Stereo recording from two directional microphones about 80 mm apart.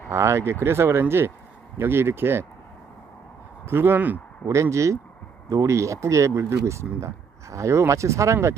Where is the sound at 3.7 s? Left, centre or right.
Right.